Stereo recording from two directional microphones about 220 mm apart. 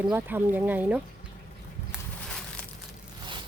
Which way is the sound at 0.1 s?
10° right (ahead or behind).